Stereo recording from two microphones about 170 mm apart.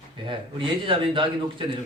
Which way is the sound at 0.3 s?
30° right (ahead or behind).